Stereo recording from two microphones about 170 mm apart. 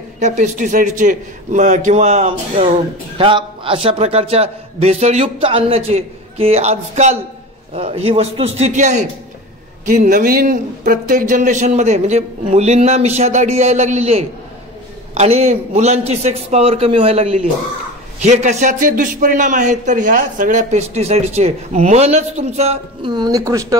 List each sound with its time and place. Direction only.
0.2 s a man's voice: 45° right (ahead or behind)
23.1 s speech: 20° right (ahead or behind)